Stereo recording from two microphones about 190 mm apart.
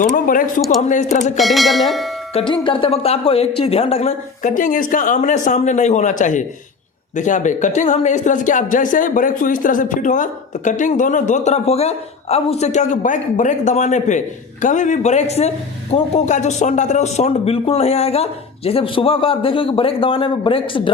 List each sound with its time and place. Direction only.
0.0 s speech: 45° left (ahead or behind)
1.4 s bell: centre (ahead or behind)
2.3 s speech: 25° left (ahead or behind)